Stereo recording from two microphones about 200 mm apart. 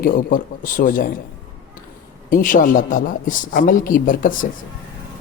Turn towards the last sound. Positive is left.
turn(degrees=40)  # may be behind; listen again after turning